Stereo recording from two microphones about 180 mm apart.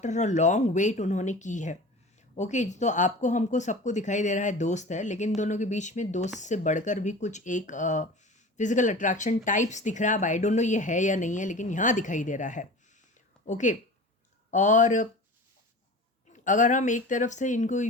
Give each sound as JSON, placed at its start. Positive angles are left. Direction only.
{"t": 0.0, "sound": "speech", "side_deg": 40}
{"t": 16.3, "sound": "speech", "side_deg": 45}